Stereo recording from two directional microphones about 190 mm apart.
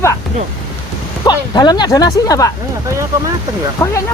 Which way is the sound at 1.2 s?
20° left (ahead or behind).